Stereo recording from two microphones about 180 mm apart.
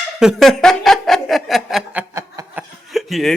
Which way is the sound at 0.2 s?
Centre (ahead or behind).